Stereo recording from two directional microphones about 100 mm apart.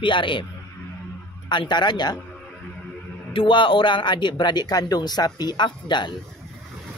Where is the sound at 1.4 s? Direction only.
50° left (ahead or behind).